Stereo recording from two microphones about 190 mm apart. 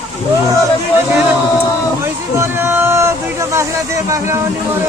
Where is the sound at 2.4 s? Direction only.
10° right (ahead or behind).